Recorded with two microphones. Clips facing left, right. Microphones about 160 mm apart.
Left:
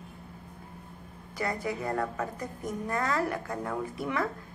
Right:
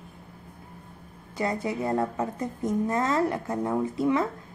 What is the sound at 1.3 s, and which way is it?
A woman's voice, 25° right (ahead or behind).